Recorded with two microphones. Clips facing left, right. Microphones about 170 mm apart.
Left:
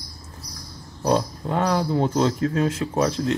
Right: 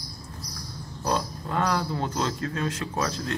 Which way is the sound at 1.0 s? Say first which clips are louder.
Left 6 dB; 25° left (ahead or behind).